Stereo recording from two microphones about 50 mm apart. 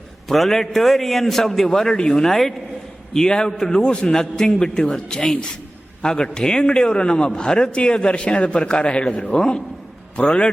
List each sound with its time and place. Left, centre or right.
0.3 s a man's voice: centre; by 10.5 s left